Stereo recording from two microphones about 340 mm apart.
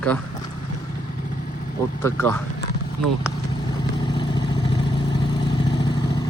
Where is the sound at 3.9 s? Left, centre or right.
Centre.